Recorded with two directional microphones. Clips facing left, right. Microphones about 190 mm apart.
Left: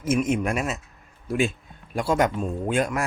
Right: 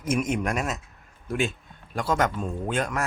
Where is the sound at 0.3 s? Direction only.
5° left (ahead or behind).